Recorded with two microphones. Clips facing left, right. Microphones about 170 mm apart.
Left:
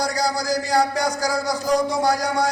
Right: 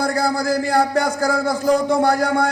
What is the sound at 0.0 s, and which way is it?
A man's voice, 55° right (ahead or behind).